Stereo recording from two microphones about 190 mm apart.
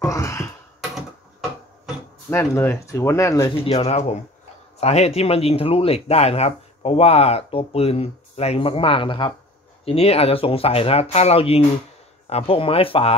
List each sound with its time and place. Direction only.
0.0 s speech: 15° left (ahead or behind)
2.2 s speech: 10° left (ahead or behind)
3.6 s speech: 35° left (ahead or behind)